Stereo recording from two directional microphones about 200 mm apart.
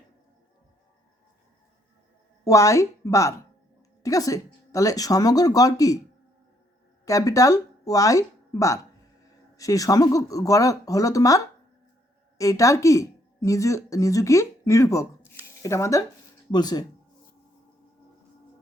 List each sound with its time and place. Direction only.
2.4 s speech: 15° left (ahead or behind)
7.0 s speech: 15° left (ahead or behind)